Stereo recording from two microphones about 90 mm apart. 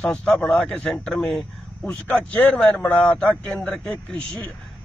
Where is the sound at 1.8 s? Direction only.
15° left (ahead or behind).